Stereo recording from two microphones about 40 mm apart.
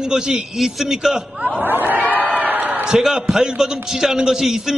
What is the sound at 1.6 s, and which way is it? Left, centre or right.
Speech, right.